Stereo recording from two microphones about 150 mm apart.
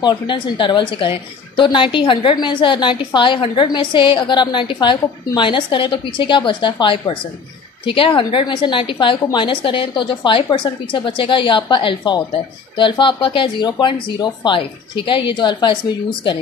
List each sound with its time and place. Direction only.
0.0 s a woman's voice: 30° left (ahead or behind)